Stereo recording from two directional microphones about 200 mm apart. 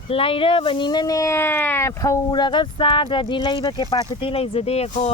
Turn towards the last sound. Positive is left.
turn(degrees=30)  # may be behind; listen again after turning